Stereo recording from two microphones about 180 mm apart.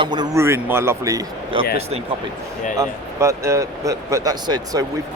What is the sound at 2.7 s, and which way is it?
Speech, 15° right (ahead or behind).